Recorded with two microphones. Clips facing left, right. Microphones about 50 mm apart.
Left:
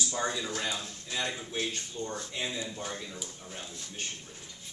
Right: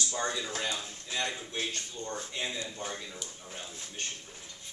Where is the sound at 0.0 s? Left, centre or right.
Centre.